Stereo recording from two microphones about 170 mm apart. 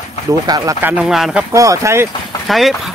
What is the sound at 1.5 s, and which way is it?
Speech, 20° right (ahead or behind).